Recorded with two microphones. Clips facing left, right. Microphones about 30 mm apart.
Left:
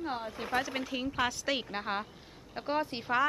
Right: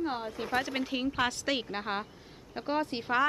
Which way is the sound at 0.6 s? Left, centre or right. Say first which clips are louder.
Right 3 dB; centre.